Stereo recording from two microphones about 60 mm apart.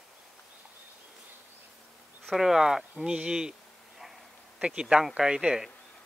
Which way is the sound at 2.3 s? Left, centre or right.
Centre.